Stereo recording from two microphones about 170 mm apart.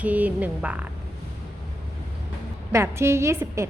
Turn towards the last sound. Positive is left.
turn(degrees=-15)  # may be behind; listen again after turning